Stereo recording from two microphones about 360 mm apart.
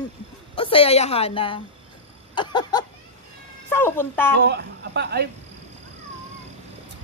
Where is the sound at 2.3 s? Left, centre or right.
Centre.